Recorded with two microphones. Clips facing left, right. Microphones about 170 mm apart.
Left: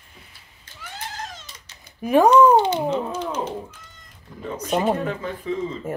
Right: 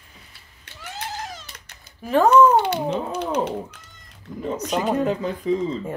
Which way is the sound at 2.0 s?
15° left (ahead or behind).